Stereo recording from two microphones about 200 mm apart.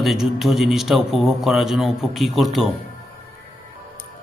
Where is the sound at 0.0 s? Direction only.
Centre (ahead or behind).